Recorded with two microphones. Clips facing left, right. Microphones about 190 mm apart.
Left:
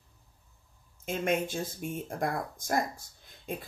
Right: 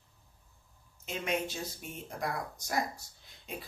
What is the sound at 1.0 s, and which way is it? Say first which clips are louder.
Speech: left 5 dB; 50° left (ahead or behind).